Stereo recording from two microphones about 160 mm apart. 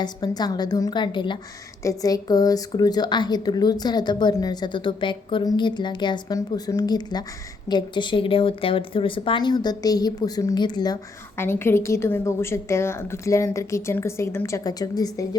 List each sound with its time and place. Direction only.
0.0 s a woman's voice: 25° left (ahead or behind)
11.3 s a woman's voice: 15° left (ahead or behind)